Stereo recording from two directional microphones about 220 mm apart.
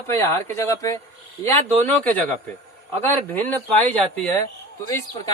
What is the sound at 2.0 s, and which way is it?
Speech, 10° left (ahead or behind).